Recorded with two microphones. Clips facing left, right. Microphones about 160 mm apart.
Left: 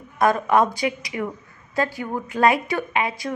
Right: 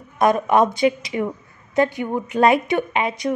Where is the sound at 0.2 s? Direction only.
20° right (ahead or behind).